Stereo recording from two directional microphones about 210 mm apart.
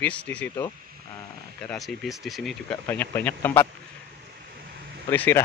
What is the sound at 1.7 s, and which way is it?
Speech, centre (ahead or behind).